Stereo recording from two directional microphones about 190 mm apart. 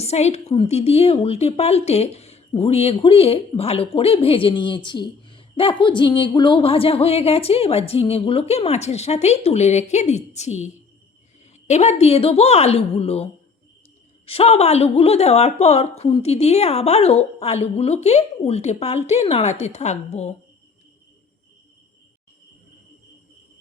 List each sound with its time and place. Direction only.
0.0 s a woman's voice: 35° left (ahead or behind)
11.7 s a woman's voice: 35° left (ahead or behind)